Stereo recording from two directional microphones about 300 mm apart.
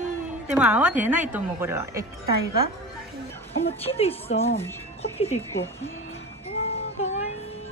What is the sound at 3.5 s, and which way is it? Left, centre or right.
A woman's voice, centre.